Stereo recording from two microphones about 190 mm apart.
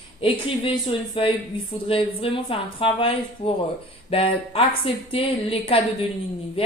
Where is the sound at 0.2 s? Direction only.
25° left (ahead or behind).